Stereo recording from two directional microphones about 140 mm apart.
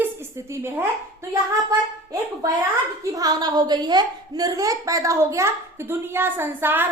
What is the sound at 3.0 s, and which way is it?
A woman's voice, 25° right (ahead or behind).